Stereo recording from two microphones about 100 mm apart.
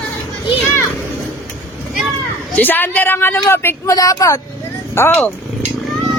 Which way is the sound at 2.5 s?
20° left (ahead or behind).